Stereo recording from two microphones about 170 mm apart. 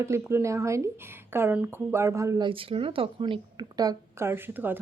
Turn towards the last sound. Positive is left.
turn(degrees=-10)  # may be behind; listen again after turning